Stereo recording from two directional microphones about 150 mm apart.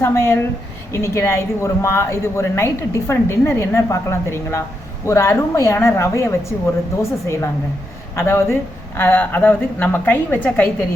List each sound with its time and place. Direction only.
0.0 s a woman's voice: 15° left (ahead or behind)